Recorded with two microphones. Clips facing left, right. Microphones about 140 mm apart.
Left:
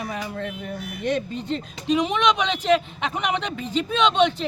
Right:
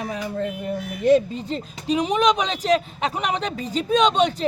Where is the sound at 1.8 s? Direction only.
40° right (ahead or behind).